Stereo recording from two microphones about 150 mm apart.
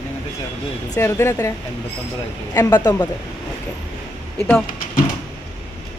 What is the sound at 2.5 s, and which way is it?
Speech, 25° left (ahead or behind).